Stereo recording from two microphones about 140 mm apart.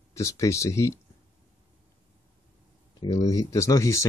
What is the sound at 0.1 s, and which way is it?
Speech, 20° left (ahead or behind).